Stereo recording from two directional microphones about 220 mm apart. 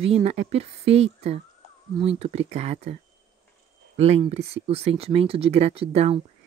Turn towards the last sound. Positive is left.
turn(degrees=-25)  # may be behind; listen again after turning